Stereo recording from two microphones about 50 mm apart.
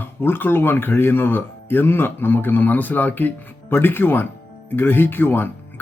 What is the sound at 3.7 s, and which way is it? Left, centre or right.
A man's voice, left.